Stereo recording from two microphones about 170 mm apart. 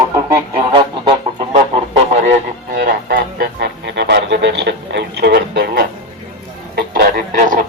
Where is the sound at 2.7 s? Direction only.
55° right (ahead or behind).